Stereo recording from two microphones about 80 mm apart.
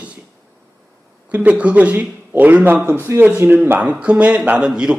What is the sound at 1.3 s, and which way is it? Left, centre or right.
A man's voice, centre.